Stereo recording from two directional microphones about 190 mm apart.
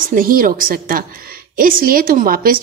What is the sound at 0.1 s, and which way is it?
A woman's voice, 50° right (ahead or behind).